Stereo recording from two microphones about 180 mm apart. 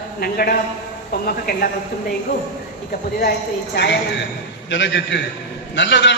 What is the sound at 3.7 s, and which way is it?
Speech, 70° left (ahead or behind).